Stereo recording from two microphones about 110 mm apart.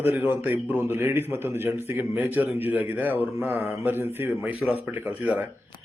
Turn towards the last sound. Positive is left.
turn(degrees=-15)  # may be behind; listen again after turning